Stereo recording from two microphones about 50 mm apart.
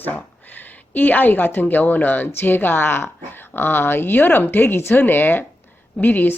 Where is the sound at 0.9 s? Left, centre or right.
Left.